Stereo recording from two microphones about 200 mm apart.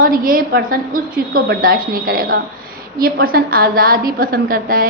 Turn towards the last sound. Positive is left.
turn(degrees=-45)  # may be behind; listen again after turning